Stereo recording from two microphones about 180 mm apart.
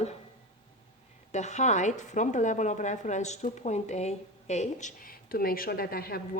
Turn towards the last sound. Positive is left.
turn(degrees=55)  # may be behind; listen again after turning